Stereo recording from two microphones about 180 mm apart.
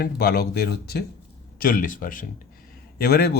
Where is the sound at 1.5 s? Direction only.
50° left (ahead or behind).